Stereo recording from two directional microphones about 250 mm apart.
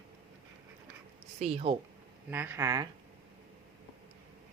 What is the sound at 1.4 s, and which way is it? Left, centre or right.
Speech, right.